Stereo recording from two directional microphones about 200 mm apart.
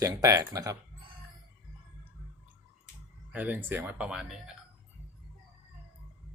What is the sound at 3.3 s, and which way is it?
Speech, 10° right (ahead or behind).